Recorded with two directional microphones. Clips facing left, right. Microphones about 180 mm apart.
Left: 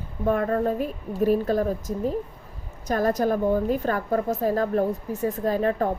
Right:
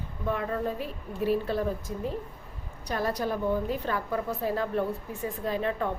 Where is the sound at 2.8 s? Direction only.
45° left (ahead or behind).